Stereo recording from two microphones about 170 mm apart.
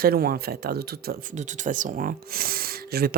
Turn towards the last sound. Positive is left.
turn(degrees=-65)  # may be behind; listen again after turning